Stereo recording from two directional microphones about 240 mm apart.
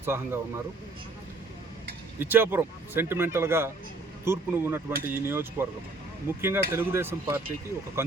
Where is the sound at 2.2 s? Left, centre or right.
Centre.